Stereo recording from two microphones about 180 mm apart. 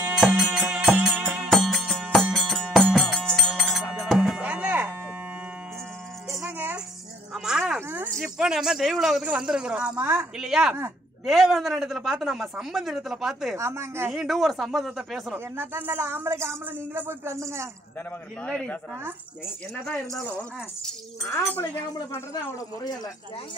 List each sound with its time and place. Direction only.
0.0 s music: 5° right (ahead or behind)
6.3 s music: 5° right (ahead or behind)
7.3 s snake: centre (ahead or behind)
8.2 s a sound: 5° right (ahead or behind)
9.0 s speech: 5° right (ahead or behind)
9.8 s speech: 15° right (ahead or behind)
10.4 s speech: centre (ahead or behind)
13.6 s speech: 15° right (ahead or behind)
14.1 s speech: centre (ahead or behind)
15.5 s speech: 10° right (ahead or behind)
18.4 s speech: 5° left (ahead or behind)
21.2 s speech: 15° left (ahead or behind)